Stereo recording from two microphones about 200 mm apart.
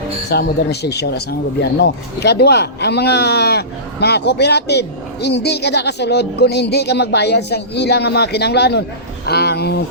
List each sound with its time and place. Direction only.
0.3 s speech: 55° left (ahead or behind)